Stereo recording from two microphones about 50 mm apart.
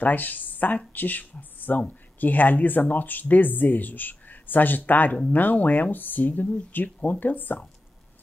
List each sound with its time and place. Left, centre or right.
0.0 s speech: left